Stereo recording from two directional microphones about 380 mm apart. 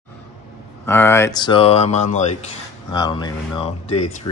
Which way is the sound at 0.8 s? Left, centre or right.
Centre.